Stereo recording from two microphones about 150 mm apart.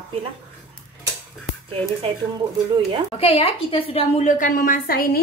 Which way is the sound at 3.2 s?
40° left (ahead or behind).